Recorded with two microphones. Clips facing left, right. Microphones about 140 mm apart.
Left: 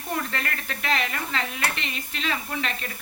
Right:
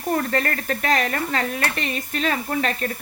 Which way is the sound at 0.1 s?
45° right (ahead or behind).